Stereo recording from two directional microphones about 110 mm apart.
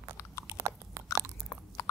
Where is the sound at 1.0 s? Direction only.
25° right (ahead or behind).